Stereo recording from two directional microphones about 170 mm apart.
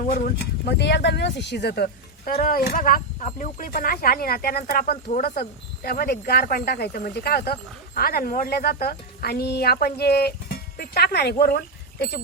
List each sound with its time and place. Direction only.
0.0 s speech: 50° left (ahead or behind)
0.7 s speech: 80° left